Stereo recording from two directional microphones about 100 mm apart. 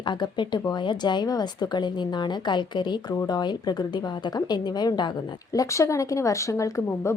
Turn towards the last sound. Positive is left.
turn(degrees=30)  # may be behind; listen again after turning